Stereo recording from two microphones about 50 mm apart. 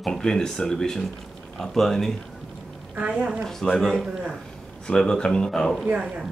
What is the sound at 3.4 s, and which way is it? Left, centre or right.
Speech, centre.